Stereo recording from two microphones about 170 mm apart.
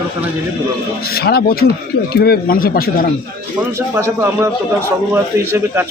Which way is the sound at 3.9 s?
15° right (ahead or behind).